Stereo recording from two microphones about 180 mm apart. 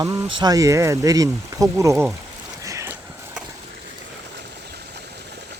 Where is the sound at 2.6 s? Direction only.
15° right (ahead or behind).